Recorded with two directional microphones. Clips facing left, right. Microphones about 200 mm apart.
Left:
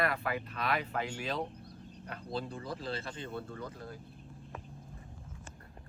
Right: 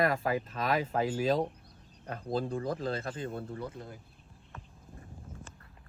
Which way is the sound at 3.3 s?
30° right (ahead or behind).